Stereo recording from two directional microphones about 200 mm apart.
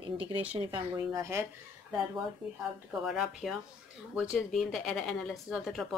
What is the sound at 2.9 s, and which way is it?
Speech, centre (ahead or behind).